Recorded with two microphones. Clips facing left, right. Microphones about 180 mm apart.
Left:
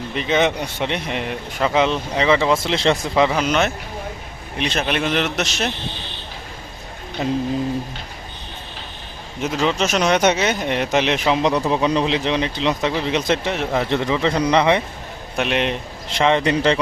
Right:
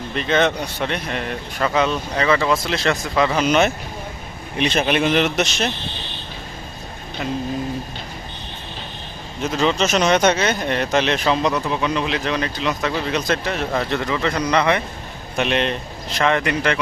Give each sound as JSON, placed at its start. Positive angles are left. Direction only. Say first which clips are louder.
{"t": 0.1, "sound": "speech", "louder": "even", "side_deg": 15}
{"t": 3.3, "sound": "a man's voice", "louder": "right 2 dB", "side_deg": -5}
{"t": 9.5, "sound": "speech", "louder": "right 1 dB", "side_deg": 10}
{"t": 11.5, "sound": "speech", "louder": "left 3 dB", "side_deg": 35}
{"t": 15.4, "sound": "speech", "louder": "even", "side_deg": 10}
{"t": 16.1, "sound": "speech", "louder": "left 2 dB", "side_deg": 25}